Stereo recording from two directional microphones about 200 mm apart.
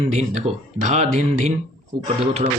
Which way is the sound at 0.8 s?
35° right (ahead or behind).